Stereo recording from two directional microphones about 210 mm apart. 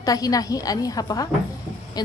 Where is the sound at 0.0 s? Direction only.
15° left (ahead or behind).